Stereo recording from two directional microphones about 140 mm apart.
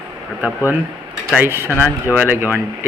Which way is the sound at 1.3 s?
15° right (ahead or behind).